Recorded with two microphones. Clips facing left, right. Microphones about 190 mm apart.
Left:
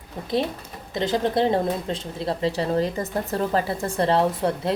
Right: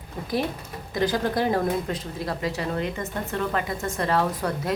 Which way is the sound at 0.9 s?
25° left (ahead or behind).